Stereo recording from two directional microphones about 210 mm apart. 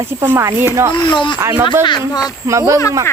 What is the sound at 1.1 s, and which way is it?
Speech, 25° left (ahead or behind).